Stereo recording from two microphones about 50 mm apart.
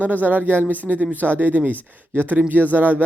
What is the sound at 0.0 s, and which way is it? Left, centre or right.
Speech, right.